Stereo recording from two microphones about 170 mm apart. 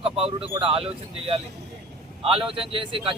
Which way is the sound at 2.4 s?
30° right (ahead or behind).